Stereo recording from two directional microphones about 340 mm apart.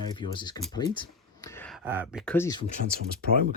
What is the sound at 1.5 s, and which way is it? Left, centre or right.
Speech, centre.